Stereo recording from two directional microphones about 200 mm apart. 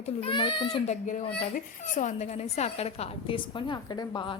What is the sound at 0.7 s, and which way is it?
A woman's voice, 35° left (ahead or behind).